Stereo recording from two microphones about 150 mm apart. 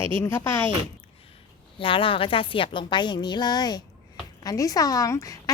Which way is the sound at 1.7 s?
35° left (ahead or behind).